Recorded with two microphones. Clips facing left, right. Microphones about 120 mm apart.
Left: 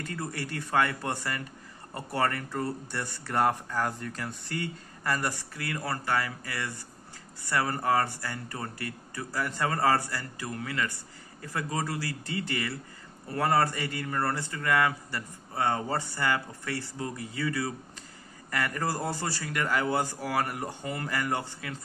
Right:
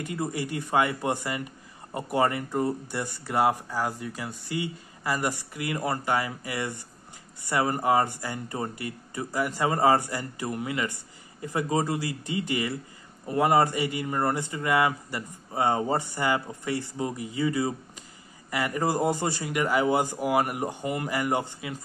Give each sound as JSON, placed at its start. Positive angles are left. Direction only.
{"t": 0.0, "sound": "speech", "side_deg": -15}